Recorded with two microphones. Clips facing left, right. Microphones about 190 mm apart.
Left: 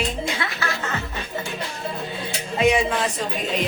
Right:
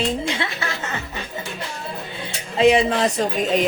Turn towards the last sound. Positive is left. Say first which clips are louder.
# right 6 dB
turn(degrees=-45)  # may be behind; listen again after turning